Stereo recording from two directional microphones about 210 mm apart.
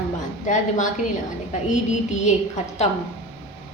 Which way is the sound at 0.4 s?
35° left (ahead or behind).